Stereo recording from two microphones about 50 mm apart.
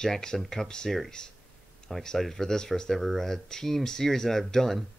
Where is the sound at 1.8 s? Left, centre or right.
Centre.